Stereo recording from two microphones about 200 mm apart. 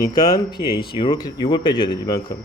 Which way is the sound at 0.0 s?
20° left (ahead or behind).